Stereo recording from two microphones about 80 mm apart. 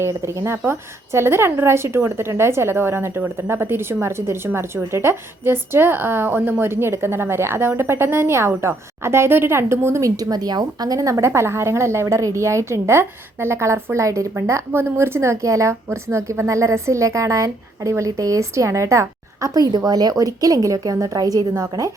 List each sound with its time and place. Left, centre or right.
0.0 s a woman's voice: right
10.2 s a woman's voice: right